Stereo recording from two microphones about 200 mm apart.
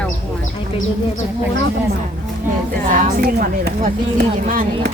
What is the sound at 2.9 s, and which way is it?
A woman's voice, 45° right (ahead or behind).